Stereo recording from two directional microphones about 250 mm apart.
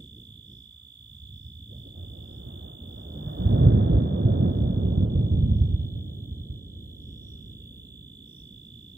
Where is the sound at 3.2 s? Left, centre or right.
Right.